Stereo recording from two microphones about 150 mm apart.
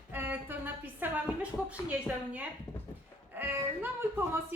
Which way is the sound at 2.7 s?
5° right (ahead or behind).